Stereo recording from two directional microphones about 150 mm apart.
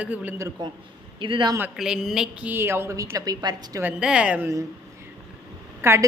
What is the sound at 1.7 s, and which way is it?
A woman's voice, 5° right (ahead or behind).